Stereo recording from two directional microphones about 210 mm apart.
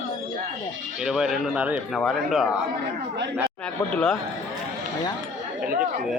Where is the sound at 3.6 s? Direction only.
5° left (ahead or behind).